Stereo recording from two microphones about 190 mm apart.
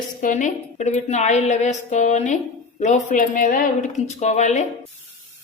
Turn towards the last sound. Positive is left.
turn(degrees=35)  # may be behind; listen again after turning